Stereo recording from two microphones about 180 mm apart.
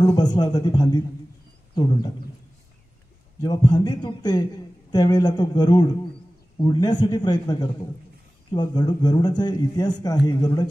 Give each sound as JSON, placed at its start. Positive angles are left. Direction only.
{"t": 0.0, "sound": "speech", "side_deg": 25}
{"t": 3.4, "sound": "speech", "side_deg": 20}